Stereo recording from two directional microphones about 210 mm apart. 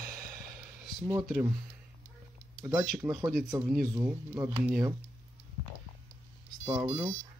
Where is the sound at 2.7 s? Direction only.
5° right (ahead or behind).